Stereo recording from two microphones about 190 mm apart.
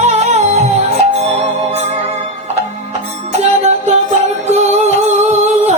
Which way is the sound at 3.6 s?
35° right (ahead or behind).